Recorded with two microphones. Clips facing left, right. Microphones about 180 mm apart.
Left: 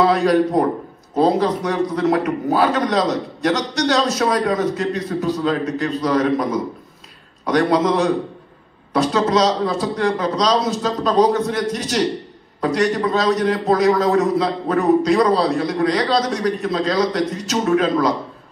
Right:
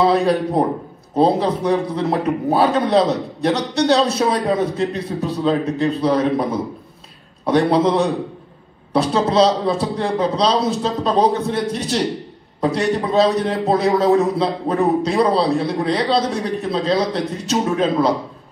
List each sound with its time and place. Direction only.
0.0 s a man's voice: 30° right (ahead or behind)
7.4 s a man's voice: 30° right (ahead or behind)
8.9 s a man's voice: 30° right (ahead or behind)